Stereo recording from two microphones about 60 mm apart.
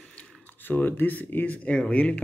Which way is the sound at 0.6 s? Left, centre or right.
Left.